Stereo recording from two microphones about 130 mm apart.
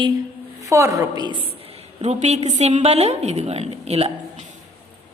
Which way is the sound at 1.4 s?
50° right (ahead or behind).